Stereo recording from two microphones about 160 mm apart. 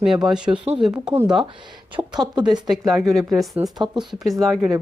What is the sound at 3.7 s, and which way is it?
Speech, 25° right (ahead or behind).